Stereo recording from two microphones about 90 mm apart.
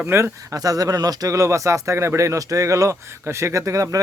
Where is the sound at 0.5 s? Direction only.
45° right (ahead or behind).